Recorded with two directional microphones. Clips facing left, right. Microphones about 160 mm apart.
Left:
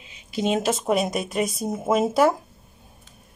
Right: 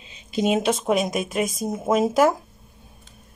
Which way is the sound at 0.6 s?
Centre (ahead or behind).